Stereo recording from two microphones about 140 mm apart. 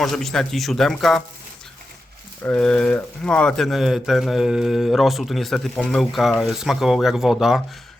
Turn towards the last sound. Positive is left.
turn(degrees=-5)  # may be behind; listen again after turning